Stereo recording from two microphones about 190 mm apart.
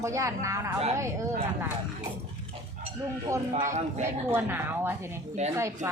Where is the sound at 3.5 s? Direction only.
40° right (ahead or behind).